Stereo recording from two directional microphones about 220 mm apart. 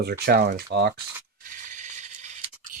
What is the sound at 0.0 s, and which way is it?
Speech, 45° right (ahead or behind).